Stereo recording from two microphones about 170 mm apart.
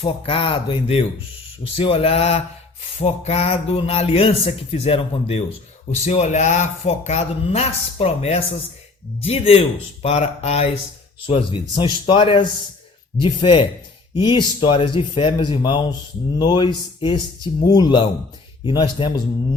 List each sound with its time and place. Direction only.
0.0 s speech: 35° left (ahead or behind)